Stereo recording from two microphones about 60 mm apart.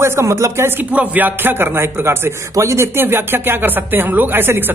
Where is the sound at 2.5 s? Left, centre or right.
Right.